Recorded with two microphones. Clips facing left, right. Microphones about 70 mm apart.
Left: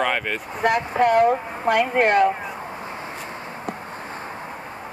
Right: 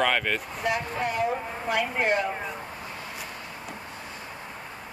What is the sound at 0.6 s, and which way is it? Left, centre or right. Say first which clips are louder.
A woman's voice: left 12 dB; left.